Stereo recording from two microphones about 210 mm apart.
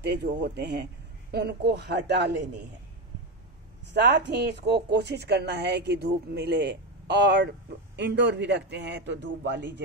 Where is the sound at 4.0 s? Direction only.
55° right (ahead or behind).